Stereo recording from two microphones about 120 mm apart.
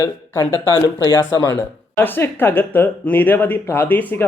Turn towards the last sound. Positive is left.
turn(degrees=15)  # may be behind; listen again after turning